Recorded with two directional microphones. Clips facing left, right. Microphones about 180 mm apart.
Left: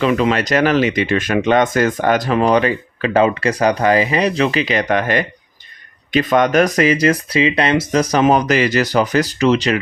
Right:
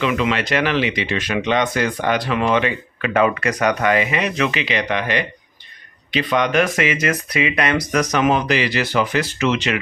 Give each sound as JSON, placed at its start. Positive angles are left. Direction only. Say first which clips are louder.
{"t": 0.0, "sound": "speech", "louder": "left 4 dB", "side_deg": 40}